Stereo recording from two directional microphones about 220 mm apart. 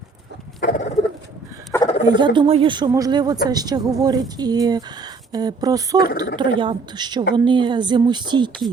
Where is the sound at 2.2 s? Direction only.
20° right (ahead or behind).